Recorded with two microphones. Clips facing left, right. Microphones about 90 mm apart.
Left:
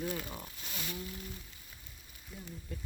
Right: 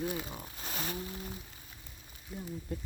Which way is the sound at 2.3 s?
45° right (ahead or behind).